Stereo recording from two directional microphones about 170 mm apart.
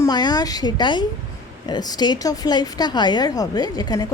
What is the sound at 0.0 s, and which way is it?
A woman's voice, 25° left (ahead or behind).